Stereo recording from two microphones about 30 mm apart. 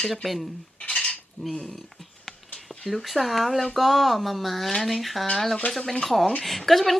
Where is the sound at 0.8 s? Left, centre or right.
Left.